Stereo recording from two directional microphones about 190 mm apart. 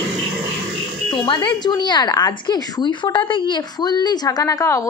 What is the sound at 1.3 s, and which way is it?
A woman's voice, 20° left (ahead or behind).